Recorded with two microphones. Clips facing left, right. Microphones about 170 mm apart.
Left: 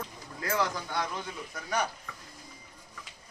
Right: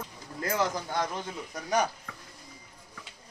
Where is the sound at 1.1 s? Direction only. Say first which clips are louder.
Right 2 dB; 20° right (ahead or behind).